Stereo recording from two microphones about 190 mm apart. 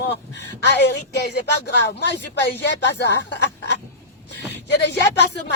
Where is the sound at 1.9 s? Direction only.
65° left (ahead or behind).